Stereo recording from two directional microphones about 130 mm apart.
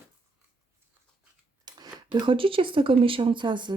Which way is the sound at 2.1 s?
40° right (ahead or behind).